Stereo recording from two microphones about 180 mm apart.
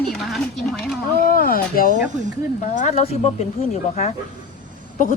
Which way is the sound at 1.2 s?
50° left (ahead or behind).